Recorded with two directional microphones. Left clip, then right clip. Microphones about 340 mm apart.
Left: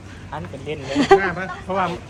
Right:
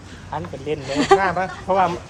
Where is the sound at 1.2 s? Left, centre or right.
Right.